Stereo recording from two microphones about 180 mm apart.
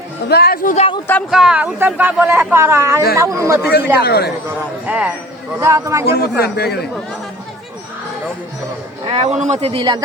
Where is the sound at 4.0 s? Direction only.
60° left (ahead or behind).